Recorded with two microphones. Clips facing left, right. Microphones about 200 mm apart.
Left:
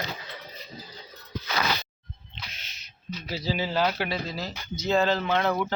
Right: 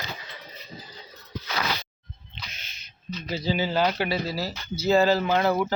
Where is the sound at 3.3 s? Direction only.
Centre (ahead or behind).